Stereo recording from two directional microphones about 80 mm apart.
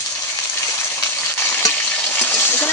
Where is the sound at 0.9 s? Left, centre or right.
Left.